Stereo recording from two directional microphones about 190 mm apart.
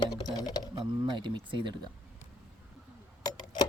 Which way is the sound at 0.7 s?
25° right (ahead or behind).